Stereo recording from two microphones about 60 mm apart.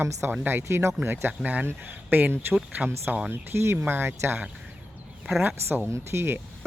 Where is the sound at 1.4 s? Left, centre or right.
Right.